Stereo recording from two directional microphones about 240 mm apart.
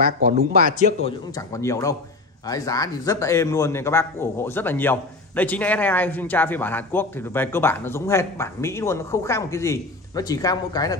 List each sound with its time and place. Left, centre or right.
0.0 s speech: right
1.3 s a man's voice: centre